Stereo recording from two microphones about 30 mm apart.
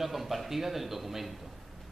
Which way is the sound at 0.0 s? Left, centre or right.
Centre.